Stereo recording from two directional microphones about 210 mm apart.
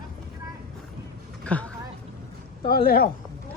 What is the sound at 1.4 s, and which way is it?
Speech, 5° left (ahead or behind).